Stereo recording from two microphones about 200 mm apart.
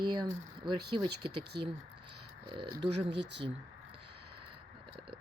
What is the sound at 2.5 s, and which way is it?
Speech, 25° right (ahead or behind).